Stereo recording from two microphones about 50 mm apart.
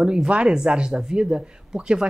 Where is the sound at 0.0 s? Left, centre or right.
Centre.